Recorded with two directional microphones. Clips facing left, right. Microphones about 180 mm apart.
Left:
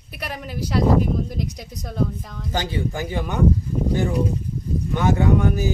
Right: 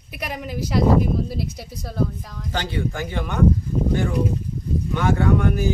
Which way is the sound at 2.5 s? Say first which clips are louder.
Left 1 dB; 15° left (ahead or behind).